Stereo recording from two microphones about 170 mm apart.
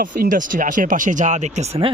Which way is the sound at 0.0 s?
55° right (ahead or behind).